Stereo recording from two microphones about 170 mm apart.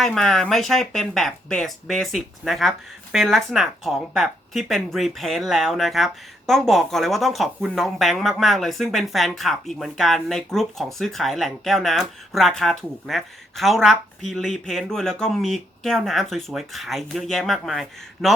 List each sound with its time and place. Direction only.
0.0 s speech: centre (ahead or behind)